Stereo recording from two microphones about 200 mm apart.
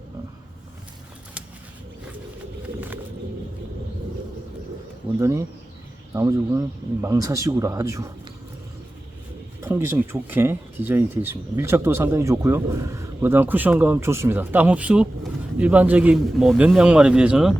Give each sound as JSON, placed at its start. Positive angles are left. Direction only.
{"t": 6.1, "sound": "speech", "side_deg": -15}
{"t": 9.6, "sound": "speech", "side_deg": -10}